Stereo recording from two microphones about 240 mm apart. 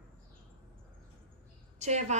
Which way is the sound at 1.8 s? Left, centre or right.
Right.